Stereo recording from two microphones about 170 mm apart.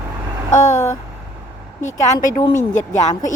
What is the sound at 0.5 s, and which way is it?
A woman's voice, 45° left (ahead or behind).